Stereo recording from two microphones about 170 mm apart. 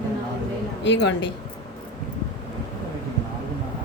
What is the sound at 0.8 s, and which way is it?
Speech, 90° left.